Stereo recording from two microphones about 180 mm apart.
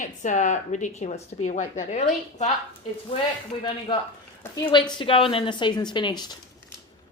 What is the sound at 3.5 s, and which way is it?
Speech, 30° left (ahead or behind).